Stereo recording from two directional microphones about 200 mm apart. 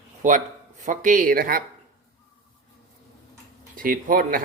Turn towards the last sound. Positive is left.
turn(degrees=-45)  # may be behind; listen again after turning